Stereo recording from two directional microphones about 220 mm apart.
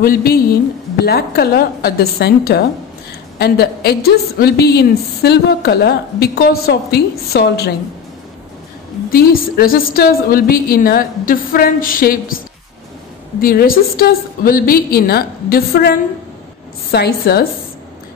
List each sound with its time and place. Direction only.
0.0 s a woman's voice: 40° left (ahead or behind)
9.1 s a woman's voice: 40° left (ahead or behind)
13.4 s a woman's voice: 40° left (ahead or behind)